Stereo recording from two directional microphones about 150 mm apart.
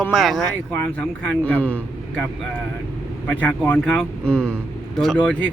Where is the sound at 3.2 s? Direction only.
10° left (ahead or behind).